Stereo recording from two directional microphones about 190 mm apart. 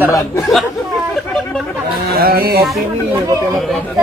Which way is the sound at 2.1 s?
55° right (ahead or behind).